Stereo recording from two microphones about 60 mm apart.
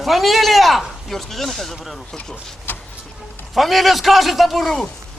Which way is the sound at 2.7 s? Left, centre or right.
Left.